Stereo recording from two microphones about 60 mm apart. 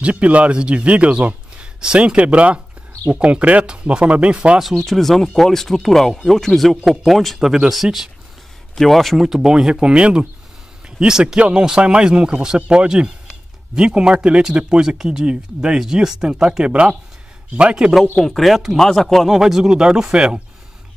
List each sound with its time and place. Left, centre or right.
0.0 s speech: right
4.6 s speech: centre
17.7 s speech: centre